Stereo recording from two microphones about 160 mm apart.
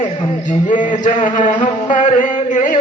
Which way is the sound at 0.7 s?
55° left (ahead or behind).